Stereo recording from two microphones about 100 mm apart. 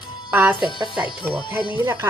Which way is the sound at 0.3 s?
15° right (ahead or behind).